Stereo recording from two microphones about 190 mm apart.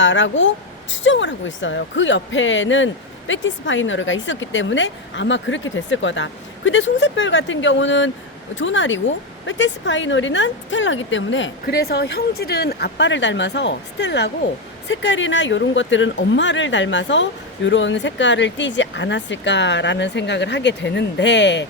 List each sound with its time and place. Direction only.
0.0 s speech: 80° left
11.6 s speech: 55° left (ahead or behind)